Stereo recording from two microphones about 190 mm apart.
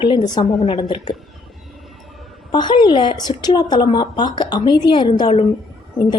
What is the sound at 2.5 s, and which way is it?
Speech, 25° left (ahead or behind).